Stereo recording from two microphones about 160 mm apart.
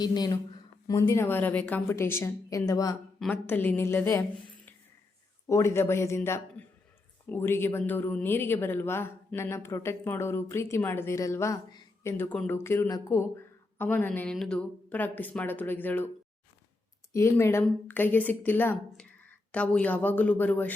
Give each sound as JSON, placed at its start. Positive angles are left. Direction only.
{"t": 0.0, "sound": "a woman's voice", "side_deg": 25}
{"t": 17.1, "sound": "speech", "side_deg": 15}